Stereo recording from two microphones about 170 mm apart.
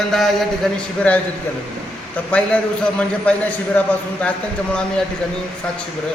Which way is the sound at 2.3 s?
5° left (ahead or behind).